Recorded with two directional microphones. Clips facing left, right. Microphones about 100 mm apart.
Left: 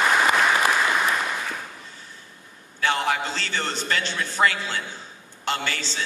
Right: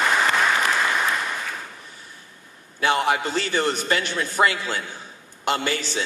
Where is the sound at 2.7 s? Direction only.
20° right (ahead or behind).